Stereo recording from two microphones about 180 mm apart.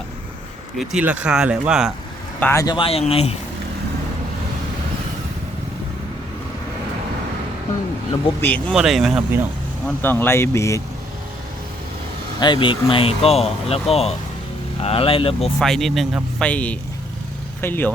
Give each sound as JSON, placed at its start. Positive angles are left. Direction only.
{"t": 0.8, "sound": "speech", "side_deg": -5}
{"t": 2.4, "sound": "speech", "side_deg": 15}
{"t": 8.4, "sound": "speech", "side_deg": 10}
{"t": 8.7, "sound": "speech", "side_deg": 0}
{"t": 9.8, "sound": "speech", "side_deg": 10}
{"t": 12.4, "sound": "speech", "side_deg": 25}
{"t": 15.5, "sound": "speech", "side_deg": 0}